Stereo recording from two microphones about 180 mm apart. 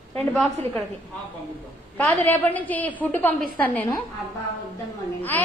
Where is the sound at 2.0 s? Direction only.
10° left (ahead or behind).